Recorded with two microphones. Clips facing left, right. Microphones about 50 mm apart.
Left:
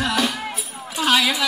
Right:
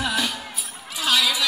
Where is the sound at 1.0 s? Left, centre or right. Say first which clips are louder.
Left 3 dB; left.